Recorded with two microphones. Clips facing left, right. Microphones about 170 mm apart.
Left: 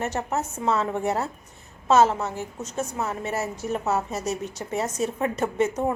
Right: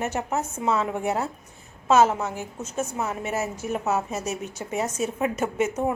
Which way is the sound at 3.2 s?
20° right (ahead or behind).